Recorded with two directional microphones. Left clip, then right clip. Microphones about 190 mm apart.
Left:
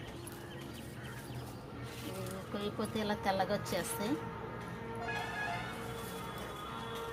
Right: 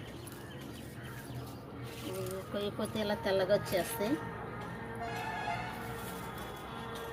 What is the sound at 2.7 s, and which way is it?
Speech, 40° left (ahead or behind).